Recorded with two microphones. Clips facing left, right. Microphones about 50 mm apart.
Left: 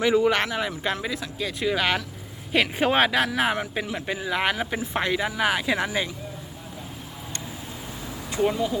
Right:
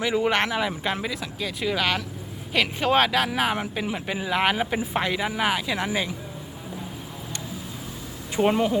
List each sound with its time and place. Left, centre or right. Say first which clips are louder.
0.2 s speech: left 1 dB; right
1.0 s speech: even; centre
3.3 s speech: left 1 dB; centre
4.9 s speech: left 2 dB; centre
8.4 s speech: right 3 dB; right